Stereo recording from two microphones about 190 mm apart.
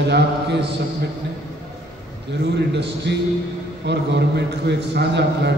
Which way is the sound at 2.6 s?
65° right (ahead or behind).